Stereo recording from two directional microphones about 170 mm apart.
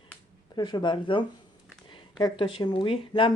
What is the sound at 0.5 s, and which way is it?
Speech, 25° left (ahead or behind).